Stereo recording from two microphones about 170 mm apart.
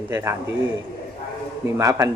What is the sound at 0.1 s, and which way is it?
Speech, 15° right (ahead or behind).